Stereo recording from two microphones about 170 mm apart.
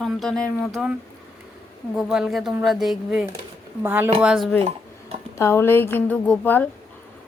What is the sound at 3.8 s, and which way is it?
Cutlery, 10° right (ahead or behind).